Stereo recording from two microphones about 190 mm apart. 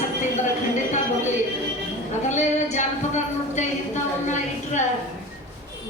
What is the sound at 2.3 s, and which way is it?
Speech, 40° left (ahead or behind).